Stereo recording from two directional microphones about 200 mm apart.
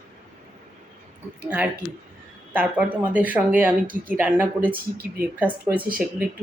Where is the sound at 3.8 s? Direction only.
45° right (ahead or behind).